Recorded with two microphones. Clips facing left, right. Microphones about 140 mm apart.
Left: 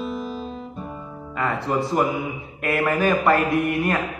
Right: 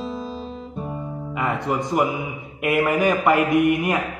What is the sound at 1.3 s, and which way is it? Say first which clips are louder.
Music: even; 15° right (ahead or behind).